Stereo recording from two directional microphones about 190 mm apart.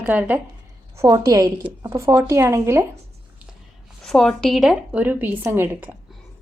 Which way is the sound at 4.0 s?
Centre (ahead or behind).